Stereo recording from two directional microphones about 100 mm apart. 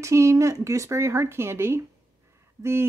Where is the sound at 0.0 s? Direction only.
30° right (ahead or behind).